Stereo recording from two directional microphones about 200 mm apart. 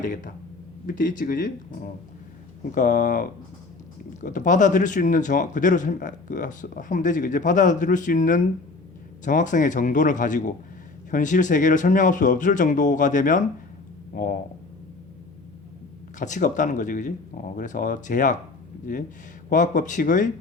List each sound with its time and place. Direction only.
0.0 s speech: 40° left (ahead or behind)
2.7 s speech: 40° left (ahead or behind)
16.1 s speech: 40° left (ahead or behind)